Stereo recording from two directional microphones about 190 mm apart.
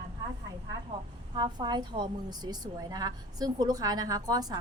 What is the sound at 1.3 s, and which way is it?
Speech, 25° right (ahead or behind).